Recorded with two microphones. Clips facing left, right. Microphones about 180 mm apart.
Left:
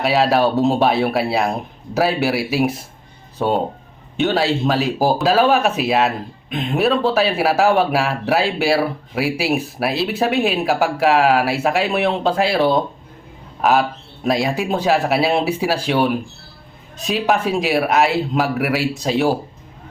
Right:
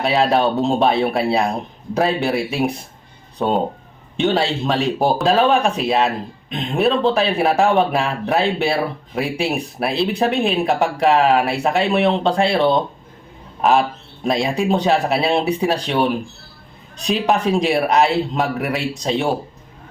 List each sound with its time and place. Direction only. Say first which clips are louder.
0.0 s speech: left 1 dB; centre (ahead or behind)